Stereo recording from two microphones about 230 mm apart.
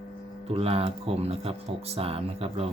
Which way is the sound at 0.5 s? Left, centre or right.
Right.